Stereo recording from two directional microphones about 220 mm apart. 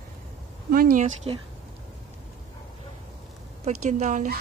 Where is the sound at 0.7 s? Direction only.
40° right (ahead or behind).